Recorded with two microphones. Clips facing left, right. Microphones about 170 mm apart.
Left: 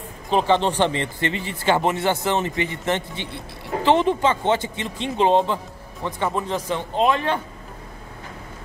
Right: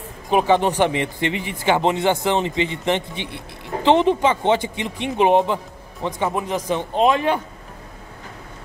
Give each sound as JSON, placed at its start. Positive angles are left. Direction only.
{"t": 0.3, "sound": "speech", "side_deg": -10}